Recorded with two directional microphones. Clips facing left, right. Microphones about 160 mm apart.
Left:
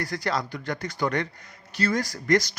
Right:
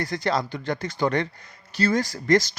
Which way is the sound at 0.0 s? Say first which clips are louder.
Right 3 dB; 25° right (ahead or behind).